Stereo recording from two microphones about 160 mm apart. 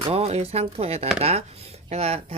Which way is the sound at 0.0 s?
40° right (ahead or behind).